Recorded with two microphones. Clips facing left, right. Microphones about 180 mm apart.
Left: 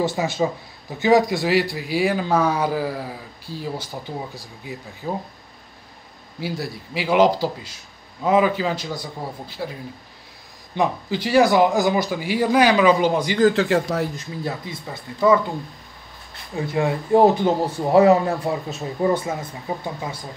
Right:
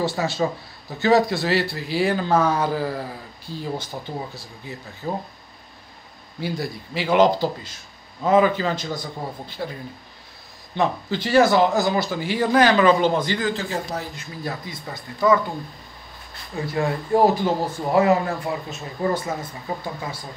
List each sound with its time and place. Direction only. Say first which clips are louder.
0.0 s a man's voice: left 1 dB; 20° left (ahead or behind)
6.4 s a man's voice: right 1 dB; 5° left (ahead or behind)
10.8 s a man's voice: left 1 dB; 10° left (ahead or behind)
13.5 s a man's voice: left 7 dB; 65° left (ahead or behind)
15.1 s a man's voice: left 2 dB; 10° left (ahead or behind)
16.5 s speech: left 2 dB; 15° left (ahead or behind)
19.7 s a man's voice: left 2 dB; 15° left (ahead or behind)